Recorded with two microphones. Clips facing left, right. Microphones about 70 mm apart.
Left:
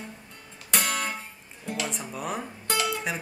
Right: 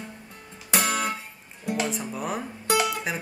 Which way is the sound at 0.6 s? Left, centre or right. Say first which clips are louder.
Right 3 dB; centre.